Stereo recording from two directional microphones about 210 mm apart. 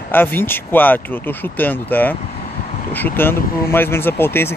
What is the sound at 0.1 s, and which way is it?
Speech, 10° left (ahead or behind).